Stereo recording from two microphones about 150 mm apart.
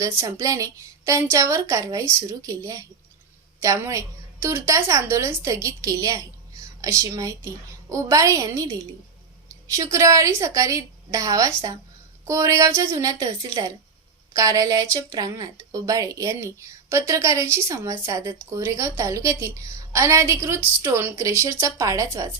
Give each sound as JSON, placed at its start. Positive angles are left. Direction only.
{"t": 0.0, "sound": "a woman's voice", "side_deg": -20}